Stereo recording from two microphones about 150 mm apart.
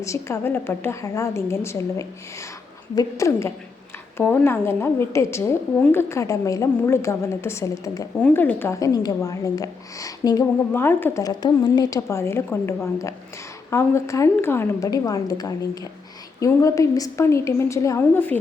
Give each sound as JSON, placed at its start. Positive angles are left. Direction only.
{"t": 0.0, "sound": "a woman's voice", "side_deg": 20}